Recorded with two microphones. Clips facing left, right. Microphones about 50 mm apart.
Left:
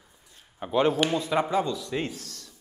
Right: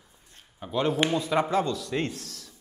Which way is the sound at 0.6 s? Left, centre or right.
Centre.